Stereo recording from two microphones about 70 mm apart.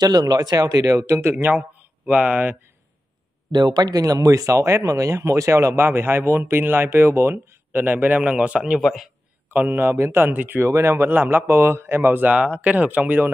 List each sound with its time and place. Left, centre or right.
0.0 s speech: right
1.3 s speech: right
3.5 s speech: right; by 8.8 s centre
8.8 s a man's voice: centre
9.5 s speech: right
10.7 s speech: right
12.3 s speech: centre